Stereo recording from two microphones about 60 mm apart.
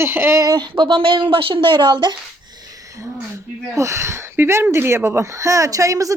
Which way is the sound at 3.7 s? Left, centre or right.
Right.